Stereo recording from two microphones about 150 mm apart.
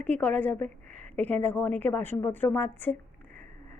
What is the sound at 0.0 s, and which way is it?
A woman's voice, 10° left (ahead or behind).